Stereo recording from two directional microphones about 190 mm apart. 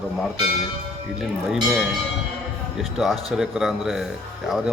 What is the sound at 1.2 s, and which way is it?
Speech, centre (ahead or behind).